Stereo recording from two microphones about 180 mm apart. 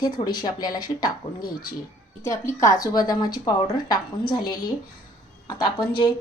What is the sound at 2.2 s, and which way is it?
Speech, 15° left (ahead or behind).